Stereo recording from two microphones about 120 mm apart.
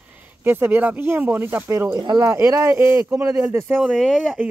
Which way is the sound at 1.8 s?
35° right (ahead or behind).